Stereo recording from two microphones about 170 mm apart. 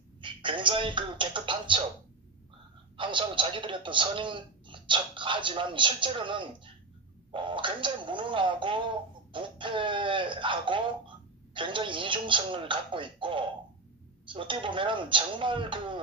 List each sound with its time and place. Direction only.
0.2 s speech: 30° right (ahead or behind)
3.0 s a man's voice: 30° right (ahead or behind)